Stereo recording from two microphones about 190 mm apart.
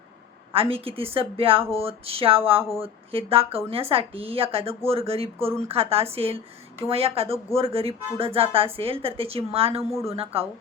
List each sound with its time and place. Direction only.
0.5 s a woman's voice: 30° right (ahead or behind)